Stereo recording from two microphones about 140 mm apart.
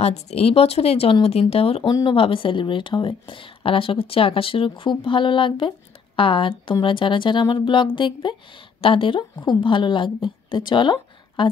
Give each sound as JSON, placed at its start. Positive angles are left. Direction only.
{"t": 0.0, "sound": "speech", "side_deg": 45}
{"t": 1.9, "sound": "speech", "side_deg": 25}
{"t": 2.1, "sound": "a woman's voice", "side_deg": 40}